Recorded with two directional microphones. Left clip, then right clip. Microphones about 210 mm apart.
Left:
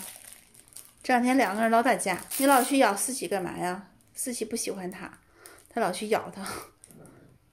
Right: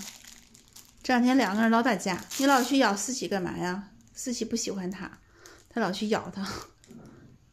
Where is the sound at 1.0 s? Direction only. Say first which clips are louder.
Left 1 dB; 5° right (ahead or behind).